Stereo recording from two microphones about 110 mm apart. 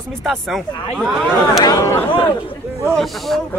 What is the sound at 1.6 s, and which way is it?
Speech, 25° left (ahead or behind).